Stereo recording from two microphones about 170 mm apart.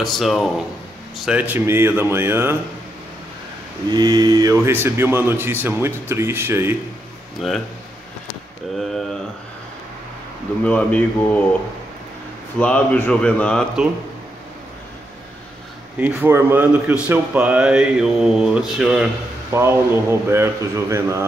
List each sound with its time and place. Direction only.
0.0 s a man's voice: centre (ahead or behind)
3.9 s a man's voice: 25° right (ahead or behind)
7.3 s speech: centre (ahead or behind)
10.6 s speech: 10° left (ahead or behind)
12.5 s speech: 10° left (ahead or behind)
16.0 s a man's voice: 10° right (ahead or behind)
19.5 s a man's voice: 15° right (ahead or behind)